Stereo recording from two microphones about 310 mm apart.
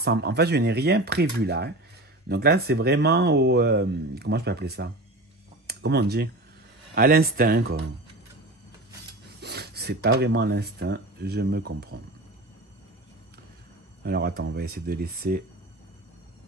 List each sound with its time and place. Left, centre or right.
0.0 s speech: right
9.4 s speech: right
14.0 s speech: right